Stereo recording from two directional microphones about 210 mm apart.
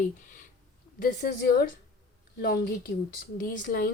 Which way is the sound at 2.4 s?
50° left (ahead or behind).